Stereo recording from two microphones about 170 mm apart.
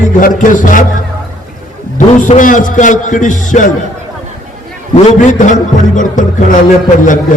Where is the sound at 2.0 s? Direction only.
45° left (ahead or behind).